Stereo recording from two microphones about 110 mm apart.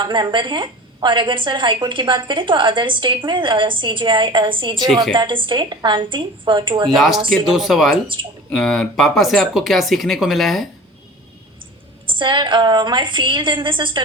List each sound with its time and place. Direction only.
0.0 s a woman's voice: 45° right (ahead or behind)
6.8 s speech: centre (ahead or behind)
8.0 s a woman's voice: 50° right (ahead or behind)
8.4 s speech: 5° left (ahead or behind)
12.0 s a woman's voice: 45° right (ahead or behind)